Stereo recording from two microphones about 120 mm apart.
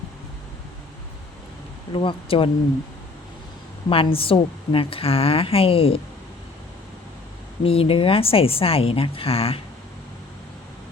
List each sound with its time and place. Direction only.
1.9 s a woman's voice: 45° left (ahead or behind)
3.8 s a woman's voice: 45° left (ahead or behind)
7.6 s a woman's voice: 50° left (ahead or behind)